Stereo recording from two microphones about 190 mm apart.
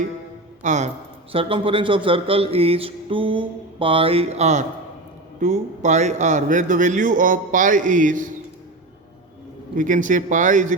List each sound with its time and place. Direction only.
0.6 s speech: 40° right (ahead or behind)
1.3 s a man's voice: 30° right (ahead or behind)
9.7 s speech: 45° right (ahead or behind)